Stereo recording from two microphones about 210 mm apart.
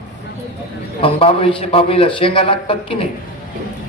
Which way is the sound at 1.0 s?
25° left (ahead or behind).